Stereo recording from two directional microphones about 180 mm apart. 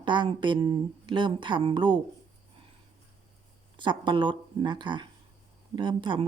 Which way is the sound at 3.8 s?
25° right (ahead or behind).